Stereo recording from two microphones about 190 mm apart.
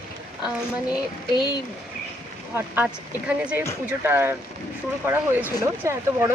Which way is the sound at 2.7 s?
5° right (ahead or behind).